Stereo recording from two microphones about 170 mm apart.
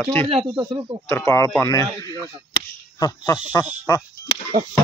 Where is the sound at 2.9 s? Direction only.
25° left (ahead or behind).